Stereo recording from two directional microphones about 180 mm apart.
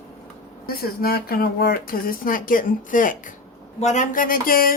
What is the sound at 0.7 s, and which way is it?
Speech, 55° left (ahead or behind).